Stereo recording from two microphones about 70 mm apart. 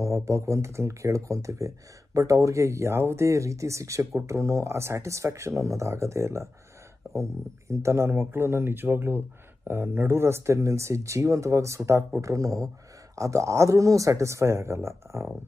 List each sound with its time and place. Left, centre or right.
0.0 s speech: right